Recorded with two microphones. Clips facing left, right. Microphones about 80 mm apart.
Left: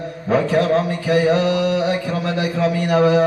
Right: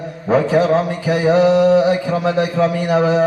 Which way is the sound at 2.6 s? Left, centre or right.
Centre.